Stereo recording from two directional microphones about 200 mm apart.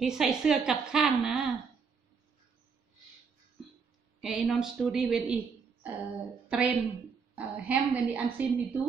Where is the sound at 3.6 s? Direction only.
Centre (ahead or behind).